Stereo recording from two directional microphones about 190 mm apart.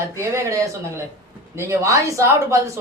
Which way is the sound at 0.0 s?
15° right (ahead or behind).